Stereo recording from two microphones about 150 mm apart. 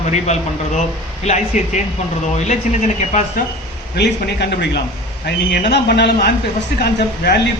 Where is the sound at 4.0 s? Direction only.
90° left.